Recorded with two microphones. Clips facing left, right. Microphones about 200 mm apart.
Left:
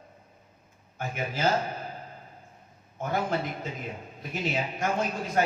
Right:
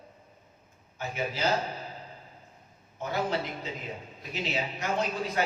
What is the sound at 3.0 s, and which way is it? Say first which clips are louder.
A man's voice: left 1 dB; 50° left (ahead or behind).